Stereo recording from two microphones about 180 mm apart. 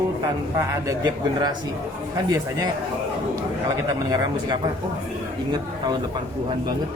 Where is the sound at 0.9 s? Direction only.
20° right (ahead or behind).